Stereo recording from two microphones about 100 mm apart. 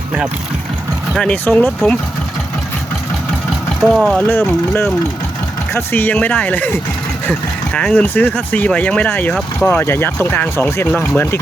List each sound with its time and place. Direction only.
1.2 s speech: 10° left (ahead or behind)
3.8 s speech: centre (ahead or behind)
4.3 s speech: 20° left (ahead or behind)